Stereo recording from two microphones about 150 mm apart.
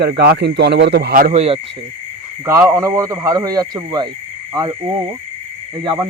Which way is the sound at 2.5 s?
15° right (ahead or behind).